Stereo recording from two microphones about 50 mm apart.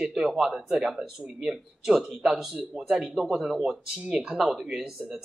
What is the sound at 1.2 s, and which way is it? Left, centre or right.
Speech, right.